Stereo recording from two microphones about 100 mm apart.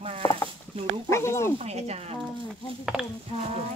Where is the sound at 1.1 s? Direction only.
30° left (ahead or behind).